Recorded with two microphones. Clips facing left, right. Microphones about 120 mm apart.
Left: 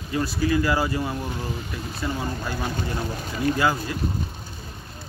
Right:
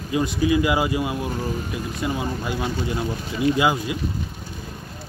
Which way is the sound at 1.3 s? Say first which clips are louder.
Right 4 dB; 45° right (ahead or behind).